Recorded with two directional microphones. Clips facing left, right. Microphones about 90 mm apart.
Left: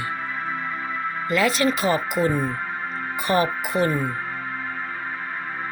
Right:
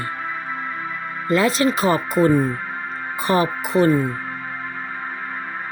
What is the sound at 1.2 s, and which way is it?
Speech, 30° right (ahead or behind).